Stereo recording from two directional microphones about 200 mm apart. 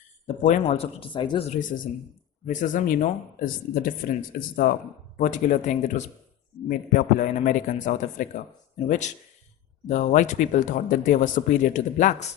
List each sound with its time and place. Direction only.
0.3 s speech: 35° left (ahead or behind)
0.7 s speech: 25° left (ahead or behind)
1.5 s speech: 40° left (ahead or behind)
9.8 s speech: 40° left (ahead or behind)